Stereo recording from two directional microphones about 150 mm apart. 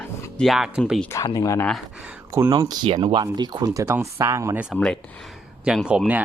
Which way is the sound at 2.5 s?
25° right (ahead or behind).